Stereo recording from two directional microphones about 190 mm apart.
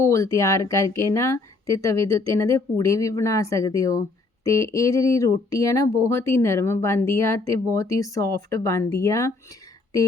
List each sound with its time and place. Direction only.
0.0 s a woman's voice: 15° left (ahead or behind)